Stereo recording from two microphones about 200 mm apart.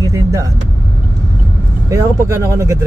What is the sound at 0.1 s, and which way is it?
Vehicle, 15° right (ahead or behind).